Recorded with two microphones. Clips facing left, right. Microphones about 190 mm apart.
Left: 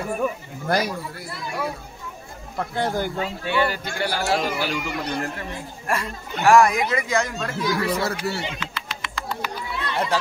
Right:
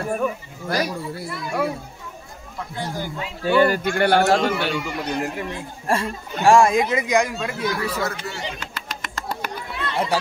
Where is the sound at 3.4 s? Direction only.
45° right (ahead or behind).